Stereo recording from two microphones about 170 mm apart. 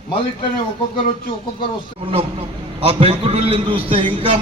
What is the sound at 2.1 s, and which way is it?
A man's voice, 35° right (ahead or behind).